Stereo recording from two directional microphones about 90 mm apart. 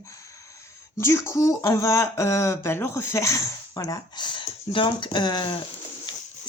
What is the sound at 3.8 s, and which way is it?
Speech, 50° left (ahead or behind).